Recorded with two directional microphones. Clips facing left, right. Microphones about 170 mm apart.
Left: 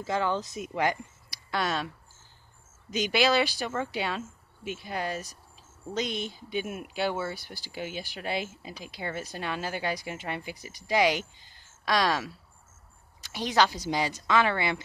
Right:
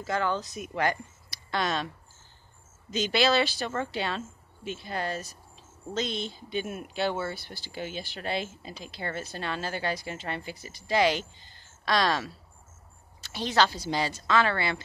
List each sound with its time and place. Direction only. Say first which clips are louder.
0.0 s speech: even; 15° left (ahead or behind)
2.9 s speech: even; 10° left (ahead or behind)